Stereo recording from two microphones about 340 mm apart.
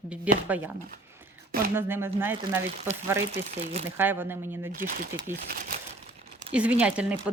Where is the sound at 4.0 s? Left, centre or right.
Centre.